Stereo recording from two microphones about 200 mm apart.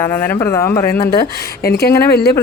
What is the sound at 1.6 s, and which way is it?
Speech, 50° left (ahead or behind).